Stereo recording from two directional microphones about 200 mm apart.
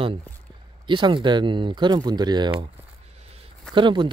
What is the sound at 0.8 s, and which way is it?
Speech, 25° right (ahead or behind).